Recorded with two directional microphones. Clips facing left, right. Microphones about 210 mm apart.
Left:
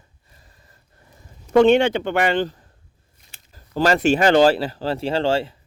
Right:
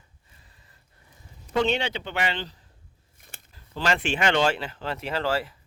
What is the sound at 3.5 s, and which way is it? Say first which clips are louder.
Speech: left 8 dB; 40° left (ahead or behind).